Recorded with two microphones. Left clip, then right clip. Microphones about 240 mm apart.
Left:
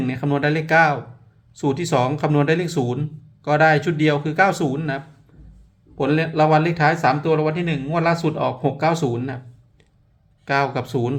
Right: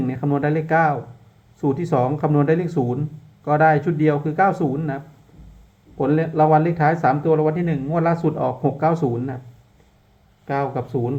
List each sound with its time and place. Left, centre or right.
0.0 s speech: centre
10.4 s speech: centre